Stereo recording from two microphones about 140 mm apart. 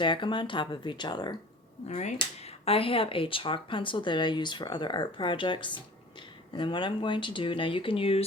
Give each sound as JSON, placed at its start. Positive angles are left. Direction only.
{"t": 0.0, "sound": "speech", "side_deg": 35}
{"t": 1.9, "sound": "speech", "side_deg": 55}
{"t": 2.1, "sound": "speech", "side_deg": 45}